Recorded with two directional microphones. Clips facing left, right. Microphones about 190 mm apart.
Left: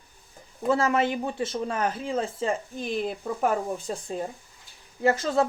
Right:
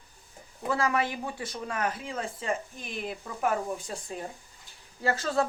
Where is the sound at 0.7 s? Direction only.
25° left (ahead or behind).